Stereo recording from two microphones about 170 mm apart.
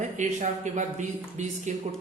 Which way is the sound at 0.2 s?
45° right (ahead or behind).